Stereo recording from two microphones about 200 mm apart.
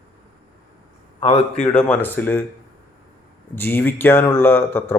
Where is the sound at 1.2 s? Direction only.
30° left (ahead or behind).